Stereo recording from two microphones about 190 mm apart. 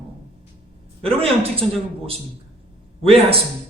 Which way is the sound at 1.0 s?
30° right (ahead or behind).